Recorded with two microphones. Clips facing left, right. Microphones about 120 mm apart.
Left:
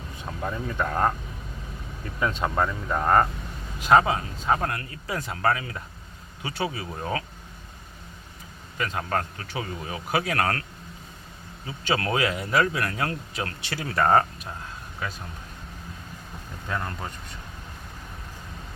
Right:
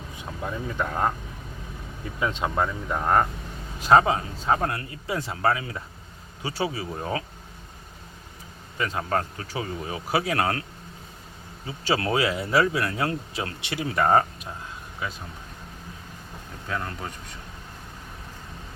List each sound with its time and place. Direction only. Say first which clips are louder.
0.8 s speech: left 1 dB; 10° right (ahead or behind)
2.1 s speech: even; 15° right (ahead or behind)
2.9 s speech: left 1 dB; 5° right (ahead or behind)
3.8 s speech: right 1 dB; 30° right (ahead or behind)
8.8 s speech: right 1 dB; 30° right (ahead or behind)
11.6 s speech: right 1 dB; 30° right (ahead or behind)
16.6 s speech: even; centre (ahead or behind)